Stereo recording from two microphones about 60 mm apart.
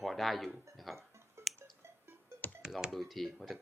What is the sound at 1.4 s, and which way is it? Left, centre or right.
Tick, right.